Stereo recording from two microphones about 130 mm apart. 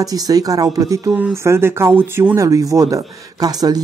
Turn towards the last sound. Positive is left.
turn(degrees=-30)  # may be behind; listen again after turning